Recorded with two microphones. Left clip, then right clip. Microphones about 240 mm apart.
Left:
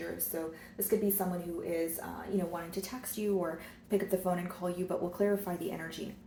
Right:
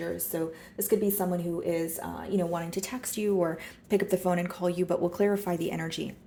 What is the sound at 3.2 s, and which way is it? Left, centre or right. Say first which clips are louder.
A woman's voice: right 6 dB; right.